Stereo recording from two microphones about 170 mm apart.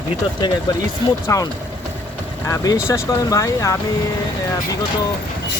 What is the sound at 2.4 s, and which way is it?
Speech, 20° left (ahead or behind).